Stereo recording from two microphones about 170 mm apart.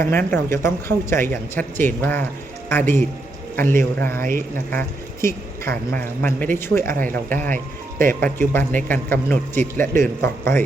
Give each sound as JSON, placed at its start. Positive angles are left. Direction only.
{"t": 0.0, "sound": "speech", "side_deg": 10}
{"t": 4.2, "sound": "speech", "side_deg": -55}
{"t": 4.7, "sound": "speech", "side_deg": 15}